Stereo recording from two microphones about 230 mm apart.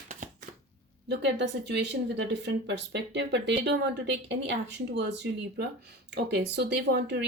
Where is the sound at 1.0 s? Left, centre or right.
Right.